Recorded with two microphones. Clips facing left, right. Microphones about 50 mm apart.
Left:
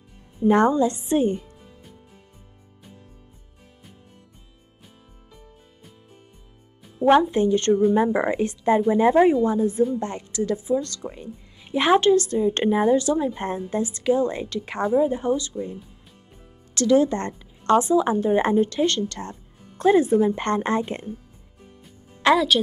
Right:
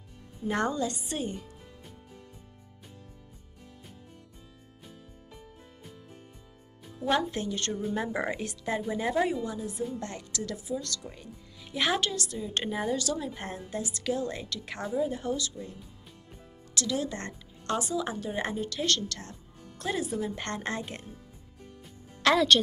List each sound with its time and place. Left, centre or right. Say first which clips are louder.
0.5 s speech: left 11 dB; left
7.0 s a woman's voice: left 11 dB; left
22.3 s speech: left 4 dB; centre